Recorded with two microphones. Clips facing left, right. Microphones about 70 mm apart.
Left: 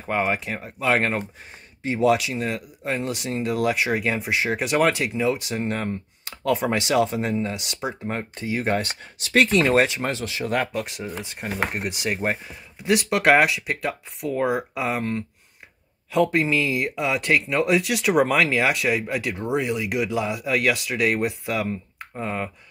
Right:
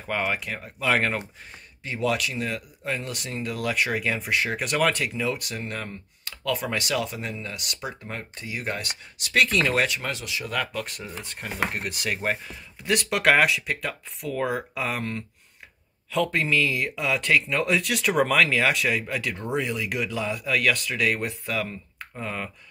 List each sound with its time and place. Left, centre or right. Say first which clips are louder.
0.2 s speech: left 4 dB; left
0.8 s speech: left 2 dB; centre
1.8 s speech: left 6 dB; left
3.7 s speech: left 2 dB; centre